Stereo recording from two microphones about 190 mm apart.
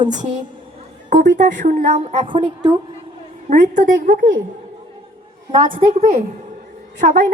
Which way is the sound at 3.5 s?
40° right (ahead or behind).